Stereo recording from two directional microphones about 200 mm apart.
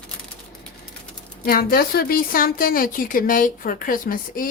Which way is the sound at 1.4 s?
50° left (ahead or behind).